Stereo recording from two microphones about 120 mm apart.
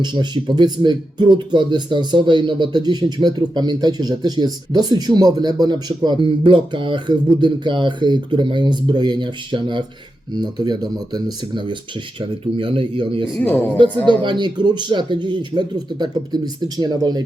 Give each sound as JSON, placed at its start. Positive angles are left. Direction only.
{"t": 0.0, "sound": "speech", "side_deg": -40}